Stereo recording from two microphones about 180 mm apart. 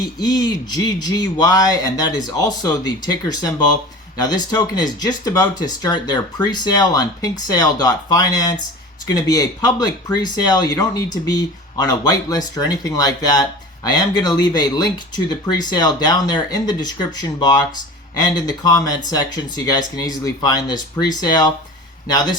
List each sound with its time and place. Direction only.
0.0 s speech: 20° left (ahead or behind)